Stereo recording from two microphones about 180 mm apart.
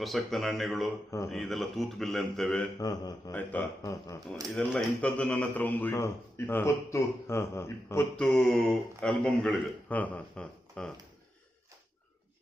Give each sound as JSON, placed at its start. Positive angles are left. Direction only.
{"t": 0.0, "sound": "a man's voice", "side_deg": 0}
{"t": 2.7, "sound": "speech", "side_deg": 20}
{"t": 3.3, "sound": "speech", "side_deg": 10}
{"t": 4.4, "sound": "speech", "side_deg": 0}